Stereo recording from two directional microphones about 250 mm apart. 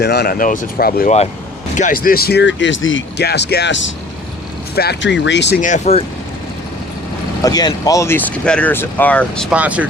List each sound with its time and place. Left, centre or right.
0.0 s speech: left
5.6 s speech: left
7.4 s speech: centre